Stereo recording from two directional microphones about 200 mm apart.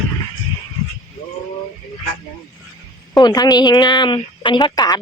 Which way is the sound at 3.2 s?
20° left (ahead or behind).